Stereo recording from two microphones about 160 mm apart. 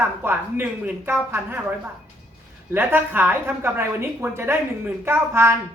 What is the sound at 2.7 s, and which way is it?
A woman's voice, 10° right (ahead or behind).